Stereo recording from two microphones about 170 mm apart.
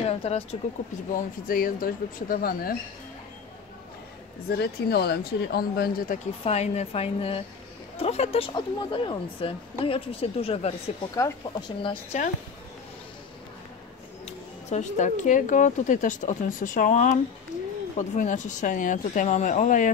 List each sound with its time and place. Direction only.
0.0 s speech: 40° left (ahead or behind)
1.1 s speech: 55° left (ahead or behind)
4.5 s speech: 70° left (ahead or behind)
6.4 s speech: 40° left (ahead or behind)
11.1 s speech: 20° left (ahead or behind)
11.8 s speech: 30° left (ahead or behind)
14.2 s speech: 45° left (ahead or behind)